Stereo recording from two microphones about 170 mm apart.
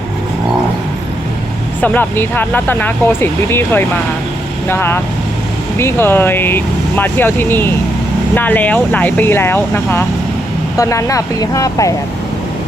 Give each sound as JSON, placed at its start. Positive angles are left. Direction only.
{"t": 1.8, "sound": "speech", "side_deg": 10}